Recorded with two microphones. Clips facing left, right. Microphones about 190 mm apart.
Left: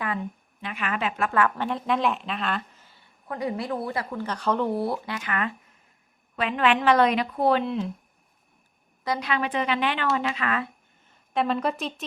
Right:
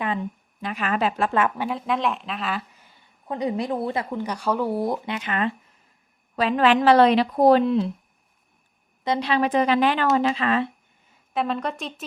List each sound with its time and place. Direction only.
0.6 s a woman's voice: 40° right (ahead or behind); by 1.5 s 25° right (ahead or behind)
1.5 s speech: 5° right (ahead or behind)
3.2 s speech: 20° right (ahead or behind)
6.3 s a woman's voice: 35° right (ahead or behind)
9.0 s a woman's voice: 30° right (ahead or behind)
11.1 s a woman's voice: centre (ahead or behind)